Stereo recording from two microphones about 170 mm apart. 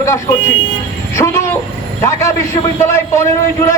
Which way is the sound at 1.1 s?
15° left (ahead or behind).